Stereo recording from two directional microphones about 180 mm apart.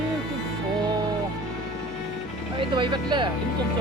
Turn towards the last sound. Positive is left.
turn(degrees=-25)  # may be behind; listen again after turning